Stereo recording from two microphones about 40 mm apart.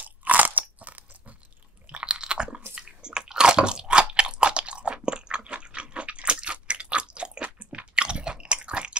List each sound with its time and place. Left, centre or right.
0.0 s crunch: right
1.9 s crunch: right
2.7 s biting: right
7.4 s chewing: right